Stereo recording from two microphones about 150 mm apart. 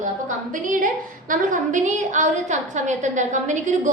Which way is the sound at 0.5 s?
60° right (ahead or behind).